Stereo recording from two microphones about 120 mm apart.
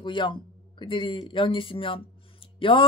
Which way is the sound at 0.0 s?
40° left (ahead or behind).